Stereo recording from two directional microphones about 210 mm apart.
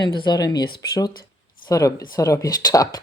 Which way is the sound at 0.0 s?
20° left (ahead or behind).